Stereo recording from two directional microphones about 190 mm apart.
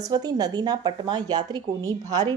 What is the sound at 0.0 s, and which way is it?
A woman's voice, 20° right (ahead or behind).